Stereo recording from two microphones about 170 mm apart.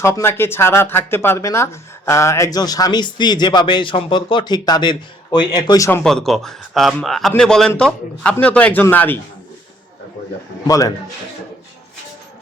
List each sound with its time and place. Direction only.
0.0 s speech: 15° left (ahead or behind)
6.0 s a man's voice: 5° left (ahead or behind)
10.7 s speech: 20° left (ahead or behind)